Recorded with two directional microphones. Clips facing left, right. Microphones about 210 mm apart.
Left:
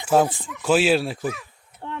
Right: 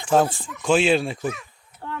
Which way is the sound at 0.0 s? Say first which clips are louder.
Even; 5° left (ahead or behind).